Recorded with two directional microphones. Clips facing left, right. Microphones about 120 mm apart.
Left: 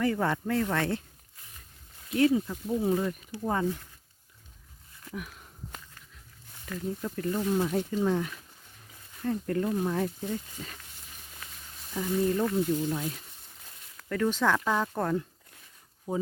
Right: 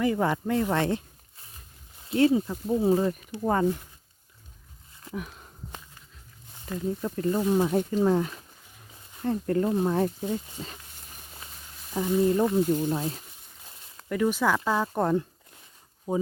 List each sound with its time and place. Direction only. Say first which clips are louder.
0.0 s speech: right 2 dB; 15° right (ahead or behind)
1.4 s snake: right 1 dB; 30° right (ahead or behind)
4.9 s a sound: right 3 dB; 30° right (ahead or behind)
6.5 s speech: right 4 dB; 25° right (ahead or behind)
7.8 s speech: right 4 dB; 35° right (ahead or behind)
11.9 s speech: right 4 dB; 25° right (ahead or behind)
13.7 s a sound: right 4 dB; 25° right (ahead or behind)
14.1 s speech: right 2 dB; 10° right (ahead or behind)
15.0 s speech: right 4 dB; 25° right (ahead or behind)